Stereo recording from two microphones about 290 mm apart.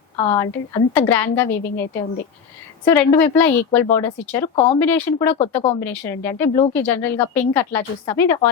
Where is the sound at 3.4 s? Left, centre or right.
Centre.